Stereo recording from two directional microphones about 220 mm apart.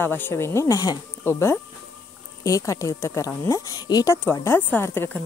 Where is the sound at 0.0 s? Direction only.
10° left (ahead or behind).